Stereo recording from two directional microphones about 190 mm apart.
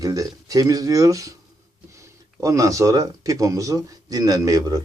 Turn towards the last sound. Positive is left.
turn(degrees=-20)  # may be behind; listen again after turning